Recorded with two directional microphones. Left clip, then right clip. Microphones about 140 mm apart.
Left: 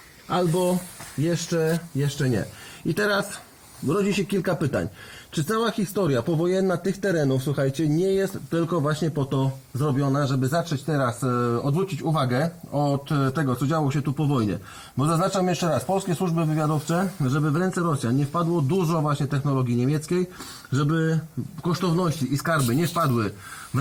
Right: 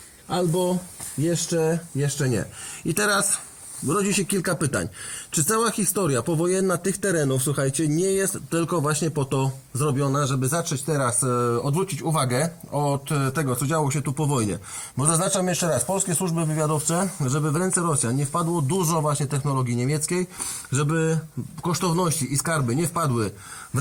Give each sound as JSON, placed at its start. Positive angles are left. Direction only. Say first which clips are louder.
{"t": 0.3, "sound": "a man's voice", "louder": "left 1 dB", "side_deg": -35}
{"t": 1.5, "sound": "speech", "louder": "right 1 dB", "side_deg": -50}
{"t": 2.0, "sound": "a man's voice", "louder": "right 1 dB", "side_deg": -35}
{"t": 2.8, "sound": "speech", "louder": "right 1 dB", "side_deg": -25}
{"t": 5.4, "sound": "a man's voice", "louder": "right 2 dB", "side_deg": -30}